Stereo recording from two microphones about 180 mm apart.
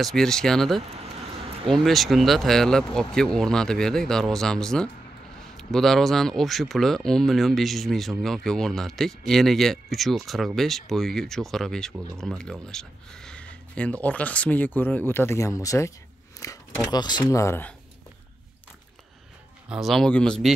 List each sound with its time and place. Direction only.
0.0 s speech: 5° left (ahead or behind)
16.4 s a sound: 20° left (ahead or behind)
16.8 s speech: 25° left (ahead or behind)
19.7 s speech: centre (ahead or behind)